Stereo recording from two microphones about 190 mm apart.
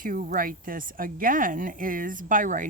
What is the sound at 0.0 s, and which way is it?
Speech, 45° right (ahead or behind).